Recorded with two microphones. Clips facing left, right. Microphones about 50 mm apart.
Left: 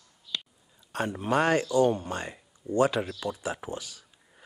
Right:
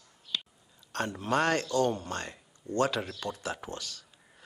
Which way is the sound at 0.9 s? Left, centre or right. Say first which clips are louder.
Left 2 dB; centre.